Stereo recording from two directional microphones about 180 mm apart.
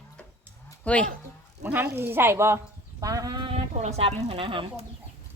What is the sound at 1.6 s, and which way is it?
A woman's voice, 10° right (ahead or behind).